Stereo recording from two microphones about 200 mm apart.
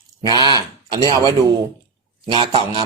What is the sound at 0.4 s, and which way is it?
Speech, 20° right (ahead or behind).